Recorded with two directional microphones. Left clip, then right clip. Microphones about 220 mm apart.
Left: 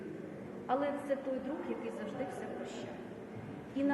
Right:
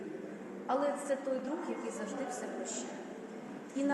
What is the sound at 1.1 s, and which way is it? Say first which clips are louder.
Speech: right 1 dB; 10° right (ahead or behind).